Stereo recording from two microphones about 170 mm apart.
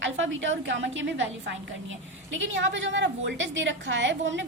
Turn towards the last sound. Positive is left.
turn(degrees=-90)